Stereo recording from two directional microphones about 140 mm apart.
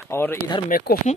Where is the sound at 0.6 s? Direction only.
90° left.